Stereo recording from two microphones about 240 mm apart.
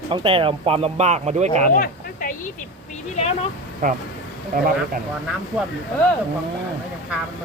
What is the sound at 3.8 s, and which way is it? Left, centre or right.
Speech, right.